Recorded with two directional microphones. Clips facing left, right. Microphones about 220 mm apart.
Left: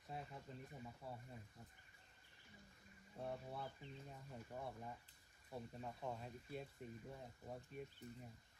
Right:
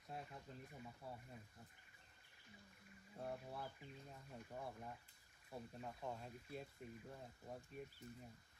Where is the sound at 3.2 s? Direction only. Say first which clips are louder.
Left 1 dB; centre (ahead or behind).